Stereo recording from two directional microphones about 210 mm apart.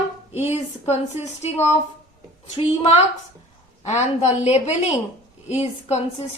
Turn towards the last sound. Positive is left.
turn(degrees=30)  # may be behind; listen again after turning